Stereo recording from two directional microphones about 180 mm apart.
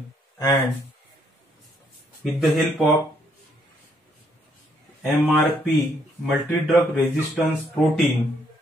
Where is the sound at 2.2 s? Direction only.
Centre (ahead or behind).